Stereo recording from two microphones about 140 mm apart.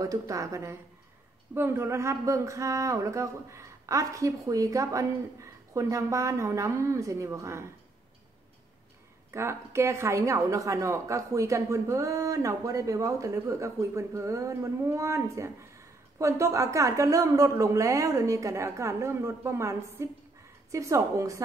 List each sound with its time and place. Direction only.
0.0 s a woman's voice: 25° right (ahead or behind)
9.3 s a woman's voice: 20° right (ahead or behind)